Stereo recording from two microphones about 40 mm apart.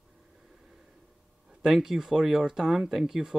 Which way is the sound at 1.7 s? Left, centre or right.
Centre.